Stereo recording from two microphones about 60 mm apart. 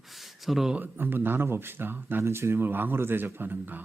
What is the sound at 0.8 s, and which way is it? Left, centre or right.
Speech, right.